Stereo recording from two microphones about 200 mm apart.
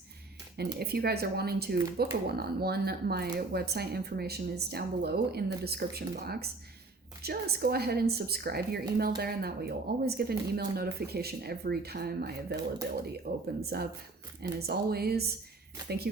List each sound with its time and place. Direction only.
0.5 s a woman's voice: 55° right (ahead or behind)